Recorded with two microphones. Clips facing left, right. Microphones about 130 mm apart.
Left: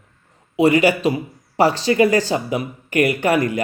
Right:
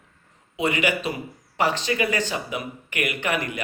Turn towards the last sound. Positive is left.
turn(degrees=35)  # may be behind; listen again after turning